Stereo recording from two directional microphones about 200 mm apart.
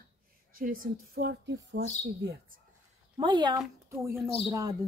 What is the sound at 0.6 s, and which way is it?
A woman's voice, 45° right (ahead or behind).